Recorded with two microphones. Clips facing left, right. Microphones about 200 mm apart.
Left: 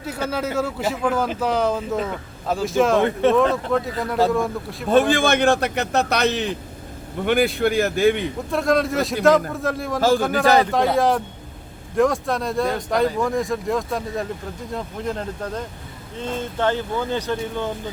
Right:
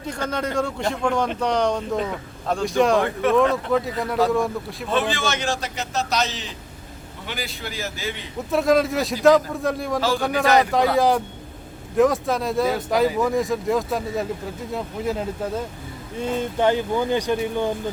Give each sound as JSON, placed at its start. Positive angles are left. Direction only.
{"t": 0.0, "sound": "speech", "side_deg": 5}
{"t": 3.0, "sound": "speech", "side_deg": 30}
{"t": 3.3, "sound": "speech", "side_deg": 0}
{"t": 4.9, "sound": "a man's voice", "side_deg": 50}
{"t": 8.4, "sound": "speech", "side_deg": 0}